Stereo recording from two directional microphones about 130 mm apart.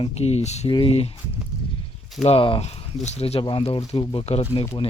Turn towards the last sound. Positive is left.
turn(degrees=50)  # may be behind; listen again after turning